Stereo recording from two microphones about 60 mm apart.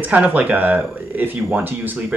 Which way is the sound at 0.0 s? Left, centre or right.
Right.